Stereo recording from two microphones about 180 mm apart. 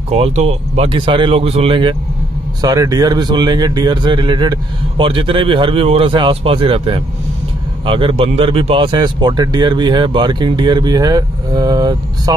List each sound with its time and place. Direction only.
0.1 s speech: 35° right (ahead or behind); by 12.4 s 20° right (ahead or behind)